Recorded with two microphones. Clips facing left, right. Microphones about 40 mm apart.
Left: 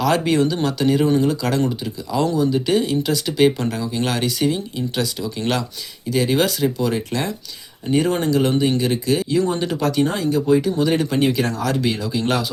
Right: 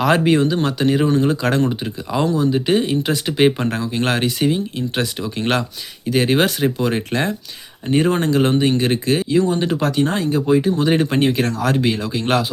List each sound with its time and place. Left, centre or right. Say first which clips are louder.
0.0 s speech: right 2 dB; right
2.2 s speech: right 1 dB; right
7.9 s speech: right 2 dB; right